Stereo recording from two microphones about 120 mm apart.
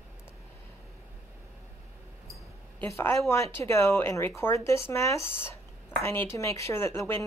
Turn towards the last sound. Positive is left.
turn(degrees=20)  # may be behind; listen again after turning